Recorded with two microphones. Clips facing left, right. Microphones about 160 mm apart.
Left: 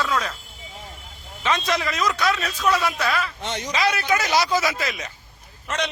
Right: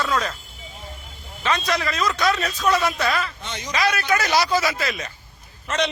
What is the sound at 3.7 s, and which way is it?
Speech, 20° left (ahead or behind).